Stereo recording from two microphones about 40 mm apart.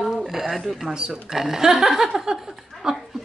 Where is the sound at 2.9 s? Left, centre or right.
Centre.